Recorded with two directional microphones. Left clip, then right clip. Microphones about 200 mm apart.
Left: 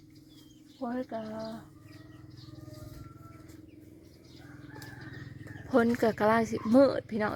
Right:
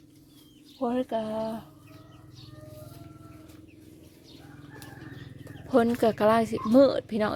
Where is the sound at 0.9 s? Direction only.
35° right (ahead or behind).